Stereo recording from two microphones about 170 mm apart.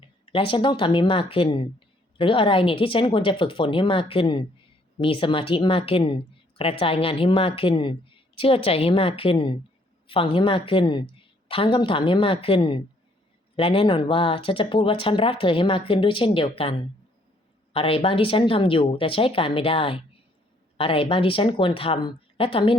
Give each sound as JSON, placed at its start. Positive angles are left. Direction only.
{"t": 0.0, "sound": "speech", "side_deg": 30}
{"t": 17.7, "sound": "speech", "side_deg": 35}